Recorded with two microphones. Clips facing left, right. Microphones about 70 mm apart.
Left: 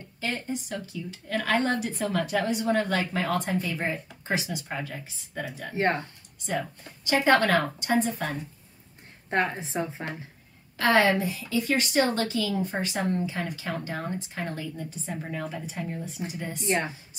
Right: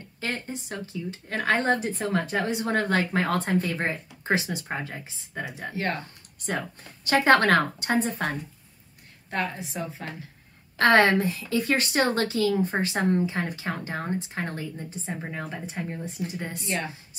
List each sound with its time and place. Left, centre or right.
0.2 s a woman's voice: right
5.8 s a woman's voice: left
7.1 s a woman's voice: right
9.3 s a woman's voice: left
10.8 s a woman's voice: right
16.3 s a woman's voice: right
16.6 s speech: left